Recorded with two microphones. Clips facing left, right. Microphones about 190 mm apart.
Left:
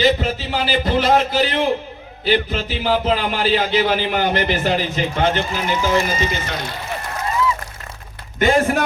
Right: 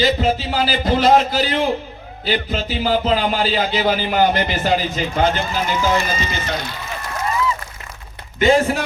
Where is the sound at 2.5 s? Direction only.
40° right (ahead or behind).